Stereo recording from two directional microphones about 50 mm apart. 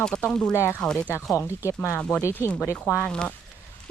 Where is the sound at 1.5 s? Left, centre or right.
Left.